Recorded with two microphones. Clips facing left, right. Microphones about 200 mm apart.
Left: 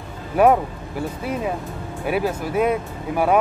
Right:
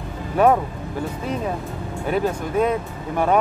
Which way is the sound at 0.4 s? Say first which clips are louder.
Left 1 dB; 10° left (ahead or behind).